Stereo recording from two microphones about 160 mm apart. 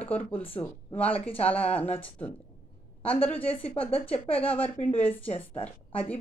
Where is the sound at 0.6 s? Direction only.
10° left (ahead or behind).